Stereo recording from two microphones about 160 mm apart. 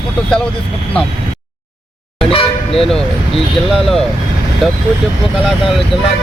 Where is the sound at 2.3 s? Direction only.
35° left (ahead or behind).